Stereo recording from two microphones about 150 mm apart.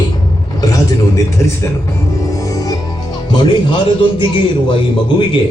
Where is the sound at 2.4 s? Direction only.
25° left (ahead or behind).